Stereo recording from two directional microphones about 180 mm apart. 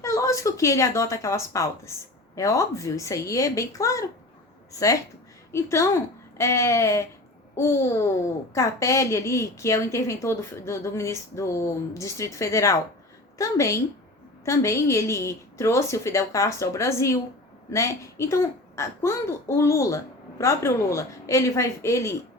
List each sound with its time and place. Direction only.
0.0 s a woman's voice: 15° left (ahead or behind)